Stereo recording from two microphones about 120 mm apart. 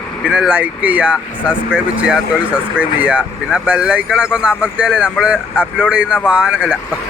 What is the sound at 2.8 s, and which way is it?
Speech, 10° right (ahead or behind).